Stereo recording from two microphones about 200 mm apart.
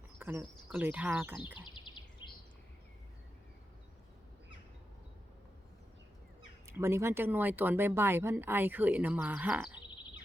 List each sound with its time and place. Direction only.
0.2 s speech: 10° right (ahead or behind)
1.5 s a sound: 25° left (ahead or behind)
6.7 s speech: 15° right (ahead or behind)